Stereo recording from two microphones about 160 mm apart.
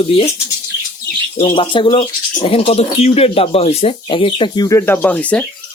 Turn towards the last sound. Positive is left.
turn(degrees=10)  # may be behind; listen again after turning